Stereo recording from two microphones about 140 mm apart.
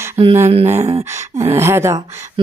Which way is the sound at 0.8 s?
45° right (ahead or behind).